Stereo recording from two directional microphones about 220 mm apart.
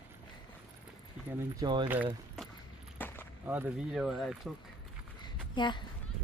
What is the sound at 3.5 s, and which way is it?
Speech, 5° right (ahead or behind).